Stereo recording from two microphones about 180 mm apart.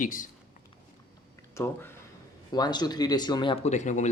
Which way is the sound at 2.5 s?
25° left (ahead or behind).